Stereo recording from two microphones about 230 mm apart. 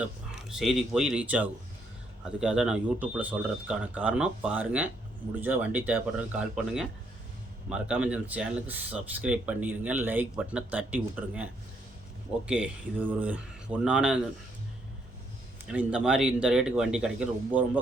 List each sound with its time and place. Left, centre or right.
0.0 s speech: centre
7.7 s speech: centre
12.5 s speech: centre
15.6 s speech: centre